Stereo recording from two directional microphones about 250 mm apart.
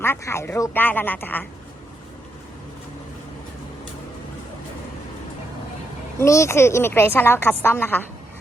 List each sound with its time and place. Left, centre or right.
0.0 s a woman's voice: centre
6.1 s a woman's voice: centre